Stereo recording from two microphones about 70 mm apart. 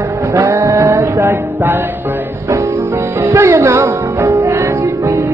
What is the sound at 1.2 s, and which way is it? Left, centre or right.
Music, right.